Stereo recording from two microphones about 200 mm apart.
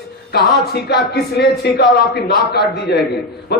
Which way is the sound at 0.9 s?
55° left (ahead or behind).